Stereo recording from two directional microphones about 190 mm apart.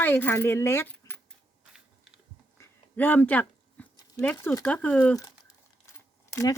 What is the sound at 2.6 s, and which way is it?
Speech, 10° left (ahead or behind).